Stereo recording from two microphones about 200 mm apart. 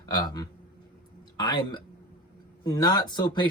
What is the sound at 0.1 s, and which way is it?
Speech, 20° left (ahead or behind).